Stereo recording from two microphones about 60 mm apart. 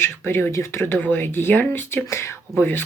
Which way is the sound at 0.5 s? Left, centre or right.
Left.